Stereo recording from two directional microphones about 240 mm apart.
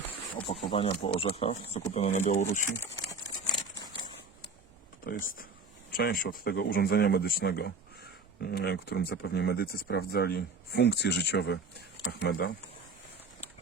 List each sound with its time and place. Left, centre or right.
0.4 s speech: left
5.0 s speech: left